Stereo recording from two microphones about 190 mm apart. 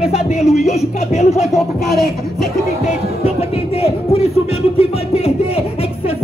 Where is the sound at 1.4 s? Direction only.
Centre (ahead or behind).